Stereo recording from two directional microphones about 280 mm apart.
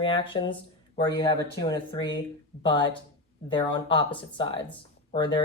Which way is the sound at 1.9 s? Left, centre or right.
Centre.